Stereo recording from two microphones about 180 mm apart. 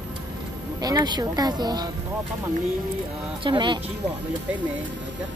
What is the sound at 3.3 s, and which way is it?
Speech, 25° right (ahead or behind).